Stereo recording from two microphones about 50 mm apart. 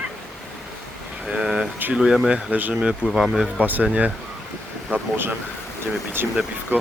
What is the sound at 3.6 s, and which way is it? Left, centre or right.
Speech, right.